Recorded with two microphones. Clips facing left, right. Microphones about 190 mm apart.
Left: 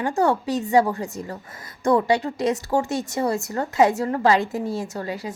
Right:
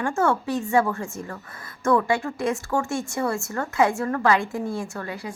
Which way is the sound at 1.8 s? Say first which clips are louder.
Left 2 dB; 35° left (ahead or behind).